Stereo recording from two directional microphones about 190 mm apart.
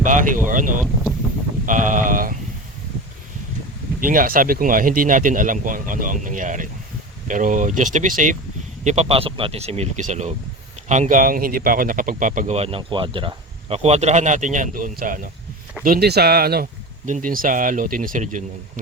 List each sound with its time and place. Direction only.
0.0 s a sound: 45° right (ahead or behind)
0.4 s speech: 45° right (ahead or behind)
1.6 s sheep: 45° right (ahead or behind)
4.0 s speech: 45° right (ahead or behind)